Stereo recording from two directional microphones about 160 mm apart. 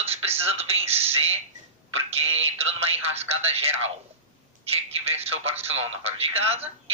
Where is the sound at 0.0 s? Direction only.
40° right (ahead or behind).